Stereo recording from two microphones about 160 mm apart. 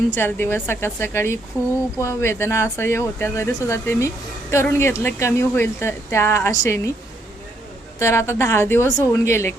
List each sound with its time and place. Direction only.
0.1 s speech: 15° left (ahead or behind)
7.9 s speech: 15° left (ahead or behind)